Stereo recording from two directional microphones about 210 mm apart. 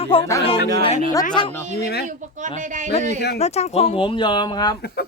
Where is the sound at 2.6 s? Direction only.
35° right (ahead or behind).